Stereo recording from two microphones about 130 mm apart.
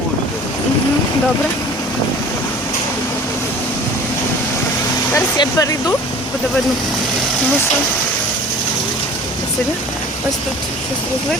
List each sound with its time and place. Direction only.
5.4 s speech: 25° left (ahead or behind)